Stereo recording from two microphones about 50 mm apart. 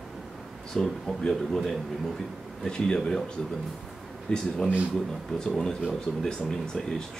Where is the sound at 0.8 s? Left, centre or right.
Centre.